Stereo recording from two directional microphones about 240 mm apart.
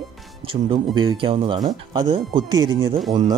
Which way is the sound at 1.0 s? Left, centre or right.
Right.